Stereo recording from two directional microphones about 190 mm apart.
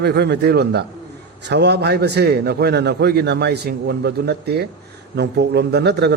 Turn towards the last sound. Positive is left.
turn(degrees=-60)  # may be behind; listen again after turning